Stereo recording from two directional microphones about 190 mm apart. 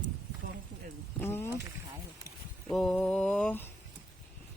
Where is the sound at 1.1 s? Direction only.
10° left (ahead or behind).